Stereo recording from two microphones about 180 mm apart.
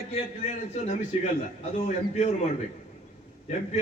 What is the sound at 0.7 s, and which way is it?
Speech, 40° left (ahead or behind).